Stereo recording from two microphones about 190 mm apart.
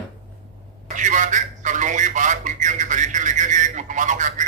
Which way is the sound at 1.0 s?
40° right (ahead or behind).